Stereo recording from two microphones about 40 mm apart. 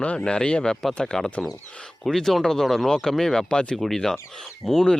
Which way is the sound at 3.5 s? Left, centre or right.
Left.